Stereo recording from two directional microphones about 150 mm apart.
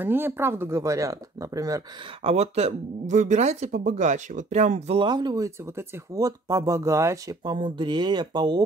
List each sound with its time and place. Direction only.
0.0 s speech: 15° right (ahead or behind)
2.2 s speech: 45° right (ahead or behind)
5.0 s speech: 30° right (ahead or behind)
7.4 s speech: 30° right (ahead or behind)